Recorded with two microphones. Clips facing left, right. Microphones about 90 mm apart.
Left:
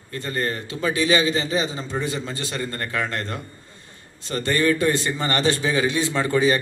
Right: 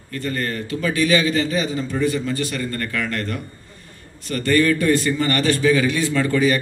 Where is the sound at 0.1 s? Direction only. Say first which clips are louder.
Right 1 dB; 25° left (ahead or behind).